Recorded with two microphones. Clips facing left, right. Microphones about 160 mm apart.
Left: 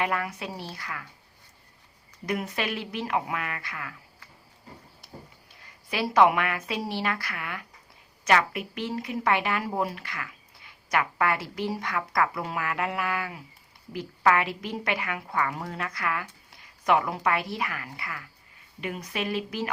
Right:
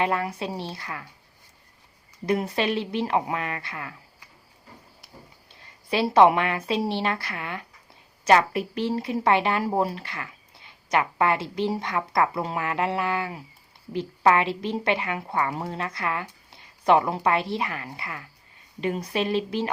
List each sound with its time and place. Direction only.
0.0 s a woman's voice: 30° right (ahead or behind)
2.2 s a woman's voice: 30° right (ahead or behind)
5.6 s a woman's voice: 30° right (ahead or behind)